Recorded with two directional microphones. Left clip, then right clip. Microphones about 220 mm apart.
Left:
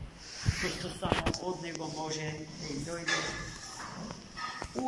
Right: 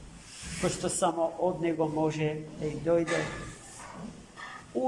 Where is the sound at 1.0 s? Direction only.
50° right (ahead or behind).